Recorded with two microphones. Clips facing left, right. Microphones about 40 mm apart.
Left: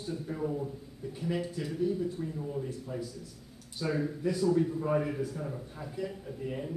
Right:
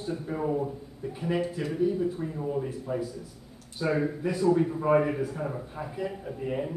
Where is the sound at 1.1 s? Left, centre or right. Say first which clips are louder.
Right 5 dB; right.